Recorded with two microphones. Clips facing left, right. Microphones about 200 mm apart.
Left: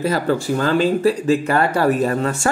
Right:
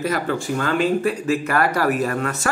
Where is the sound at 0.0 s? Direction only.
30° left (ahead or behind).